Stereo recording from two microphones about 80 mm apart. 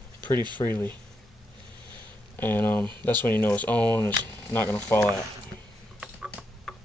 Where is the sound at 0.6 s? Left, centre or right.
Left.